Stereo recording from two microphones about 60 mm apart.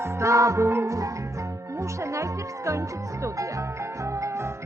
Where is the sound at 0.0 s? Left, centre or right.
Right.